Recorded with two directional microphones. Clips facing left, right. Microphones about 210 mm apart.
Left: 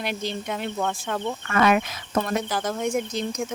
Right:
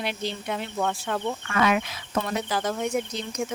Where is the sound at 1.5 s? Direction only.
50° left (ahead or behind).